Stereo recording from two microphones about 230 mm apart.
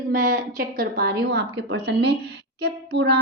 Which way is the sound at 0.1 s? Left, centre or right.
Right.